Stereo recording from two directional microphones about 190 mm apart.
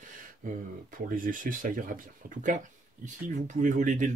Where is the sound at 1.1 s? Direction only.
45° right (ahead or behind).